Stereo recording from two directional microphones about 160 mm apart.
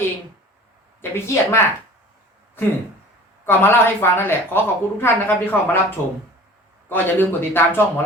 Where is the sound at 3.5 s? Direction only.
15° left (ahead or behind).